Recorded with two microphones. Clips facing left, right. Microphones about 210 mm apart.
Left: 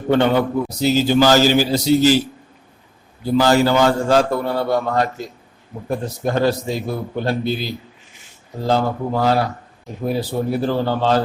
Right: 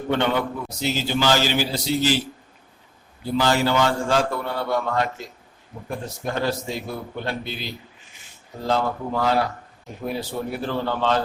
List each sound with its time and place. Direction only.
0.1 s a man's voice: 40° left (ahead or behind)
3.3 s a man's voice: 40° left (ahead or behind)
5.7 s speech: 55° left (ahead or behind)
6.2 s a man's voice: 40° left (ahead or behind)